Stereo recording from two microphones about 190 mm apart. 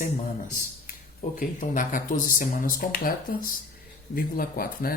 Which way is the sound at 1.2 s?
40° left (ahead or behind).